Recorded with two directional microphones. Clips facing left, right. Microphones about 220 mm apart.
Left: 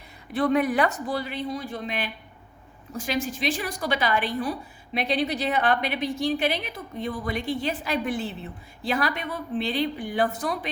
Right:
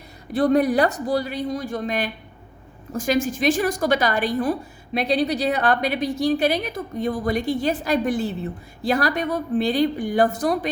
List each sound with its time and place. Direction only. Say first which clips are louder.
0.3 s a woman's voice: right 4 dB; 40° right (ahead or behind)